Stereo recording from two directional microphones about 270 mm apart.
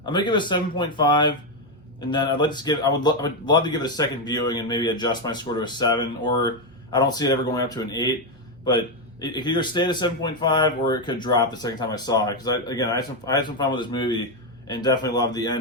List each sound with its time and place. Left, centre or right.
0.0 s speech: centre
9.2 s speech: centre